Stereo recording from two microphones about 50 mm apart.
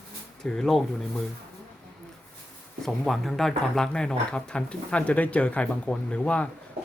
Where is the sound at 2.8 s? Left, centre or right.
Centre.